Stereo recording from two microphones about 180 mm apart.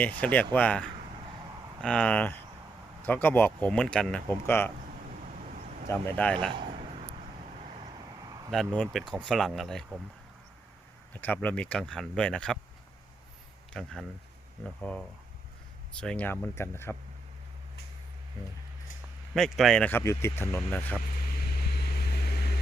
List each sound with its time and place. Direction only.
0.2 s speech: 10° left (ahead or behind)
5.9 s speech: 10° left (ahead or behind)
6.7 s a sound: 35° right (ahead or behind)
7.6 s vehicle: 35° right (ahead or behind)
8.7 s speech: 5° left (ahead or behind)
11.1 s speech: 10° left (ahead or behind)
13.7 s speech: centre (ahead or behind)
19.3 s speech: centre (ahead or behind)
21.9 s vehicle: 60° left (ahead or behind)